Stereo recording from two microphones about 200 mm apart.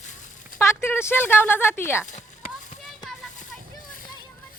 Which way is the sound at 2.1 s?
40° left (ahead or behind).